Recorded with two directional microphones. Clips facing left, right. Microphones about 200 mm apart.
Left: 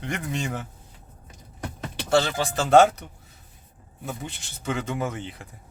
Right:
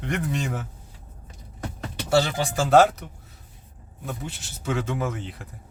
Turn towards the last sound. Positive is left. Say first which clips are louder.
# even
turn(degrees=0)  # may be behind; listen again after turning